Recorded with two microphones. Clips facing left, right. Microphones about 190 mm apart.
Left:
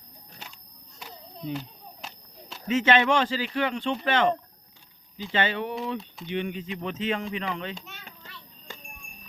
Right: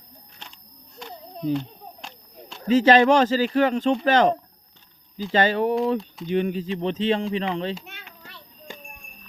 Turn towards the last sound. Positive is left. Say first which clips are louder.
# right 6 dB
turn(degrees=-30)  # may be behind; listen again after turning